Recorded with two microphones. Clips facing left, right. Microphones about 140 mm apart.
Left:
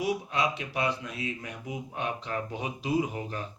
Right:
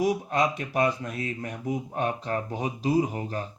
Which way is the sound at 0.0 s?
45° right (ahead or behind).